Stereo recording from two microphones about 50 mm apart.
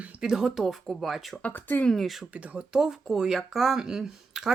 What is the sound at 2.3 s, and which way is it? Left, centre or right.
Speech, right.